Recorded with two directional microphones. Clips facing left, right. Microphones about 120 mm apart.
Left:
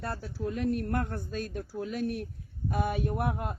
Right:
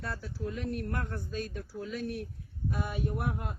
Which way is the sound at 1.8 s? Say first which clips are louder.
Left 4 dB; 65° left (ahead or behind).